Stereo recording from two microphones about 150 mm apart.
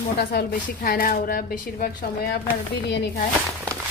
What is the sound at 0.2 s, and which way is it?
Speech, 90° left.